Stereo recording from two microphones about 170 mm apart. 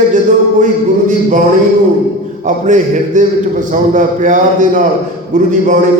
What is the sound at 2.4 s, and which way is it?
A man's voice, 45° right (ahead or behind).